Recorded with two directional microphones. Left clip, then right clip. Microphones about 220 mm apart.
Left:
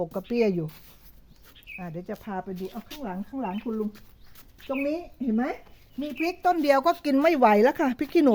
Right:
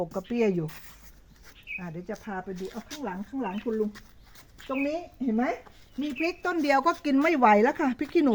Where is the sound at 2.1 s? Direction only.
50° left (ahead or behind).